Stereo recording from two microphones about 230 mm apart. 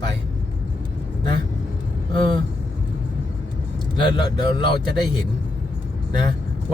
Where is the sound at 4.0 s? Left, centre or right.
Centre.